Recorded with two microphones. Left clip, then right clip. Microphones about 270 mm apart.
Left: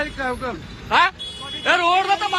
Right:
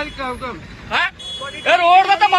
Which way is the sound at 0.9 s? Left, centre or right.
Centre.